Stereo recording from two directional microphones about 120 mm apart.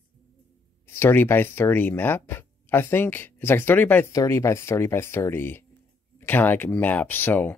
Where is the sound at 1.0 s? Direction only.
20° left (ahead or behind).